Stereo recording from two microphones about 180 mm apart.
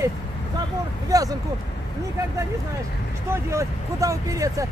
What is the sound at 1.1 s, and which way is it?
Speech, 20° right (ahead or behind).